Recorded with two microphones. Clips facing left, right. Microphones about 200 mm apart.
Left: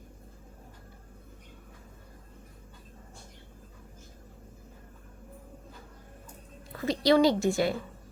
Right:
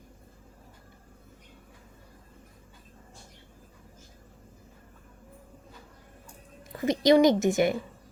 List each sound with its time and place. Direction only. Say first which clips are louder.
6.7 s a woman's voice: right 3 dB; 20° right (ahead or behind)